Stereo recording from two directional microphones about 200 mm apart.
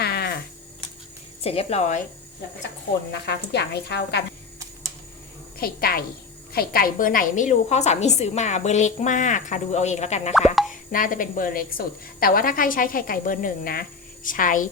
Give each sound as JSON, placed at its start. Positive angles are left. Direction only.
{"t": 0.0, "sound": "a sound", "side_deg": 55}
{"t": 1.5, "sound": "a woman's voice", "side_deg": 30}
{"t": 3.1, "sound": "a woman's voice", "side_deg": 60}
{"t": 5.5, "sound": "a woman's voice", "side_deg": 50}
{"t": 10.5, "sound": "speech", "side_deg": 0}
{"t": 10.9, "sound": "a woman's voice", "side_deg": 45}